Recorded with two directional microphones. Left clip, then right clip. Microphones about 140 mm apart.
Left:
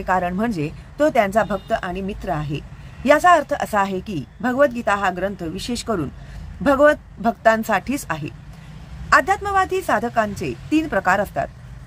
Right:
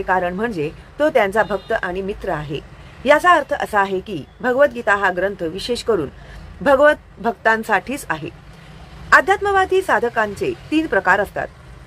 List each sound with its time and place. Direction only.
0.0 s a woman's voice: 35° left (ahead or behind)